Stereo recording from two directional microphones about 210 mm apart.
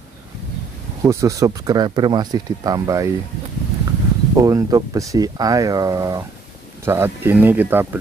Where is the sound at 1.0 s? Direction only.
15° right (ahead or behind).